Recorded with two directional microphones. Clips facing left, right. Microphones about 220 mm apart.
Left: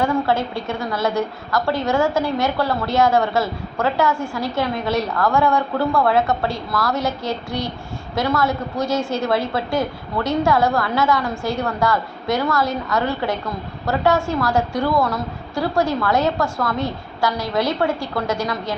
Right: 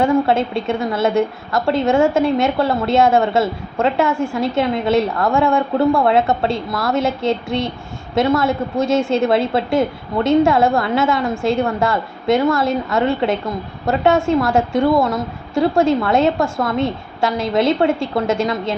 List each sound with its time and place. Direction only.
0.0 s a woman's voice: 25° right (ahead or behind)